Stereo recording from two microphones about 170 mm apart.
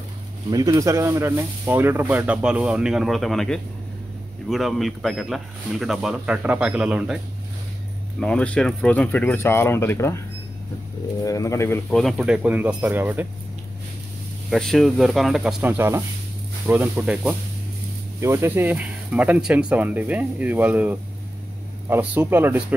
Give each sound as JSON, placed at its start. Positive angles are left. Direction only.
{"t": 0.5, "sound": "speech", "side_deg": -20}
{"t": 8.2, "sound": "speech", "side_deg": 5}
{"t": 11.2, "sound": "speech", "side_deg": 20}
{"t": 11.9, "sound": "speech", "side_deg": 0}
{"t": 14.5, "sound": "speech", "side_deg": 0}
{"t": 18.2, "sound": "speech", "side_deg": -15}